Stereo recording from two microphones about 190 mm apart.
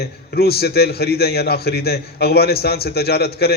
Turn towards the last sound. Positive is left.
turn(degrees=55)  # may be behind; listen again after turning